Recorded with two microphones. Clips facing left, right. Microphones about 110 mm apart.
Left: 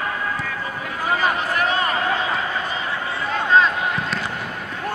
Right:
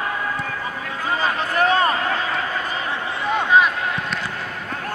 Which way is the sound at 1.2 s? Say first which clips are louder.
Right 3 dB; 35° right (ahead or behind).